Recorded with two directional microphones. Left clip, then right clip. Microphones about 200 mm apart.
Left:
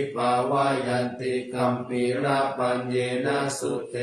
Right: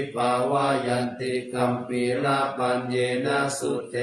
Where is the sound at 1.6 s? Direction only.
20° right (ahead or behind).